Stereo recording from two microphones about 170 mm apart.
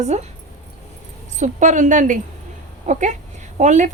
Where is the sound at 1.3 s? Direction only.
45° right (ahead or behind).